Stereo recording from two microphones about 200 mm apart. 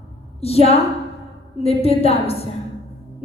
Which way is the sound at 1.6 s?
30° left (ahead or behind).